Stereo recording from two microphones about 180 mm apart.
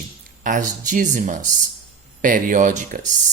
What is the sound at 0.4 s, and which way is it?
Speech, 45° right (ahead or behind).